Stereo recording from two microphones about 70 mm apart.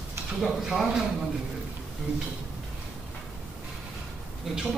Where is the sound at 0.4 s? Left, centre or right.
Centre.